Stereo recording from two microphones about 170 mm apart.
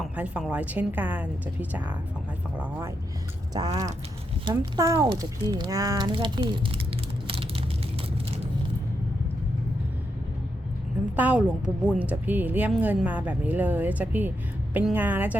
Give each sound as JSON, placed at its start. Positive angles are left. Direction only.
{"t": 0.0, "sound": "a woman's voice", "side_deg": -5}
{"t": 2.6, "sound": "a woman's voice", "side_deg": -10}
{"t": 4.4, "sound": "speech", "side_deg": -20}
{"t": 11.2, "sound": "a woman's voice", "side_deg": -10}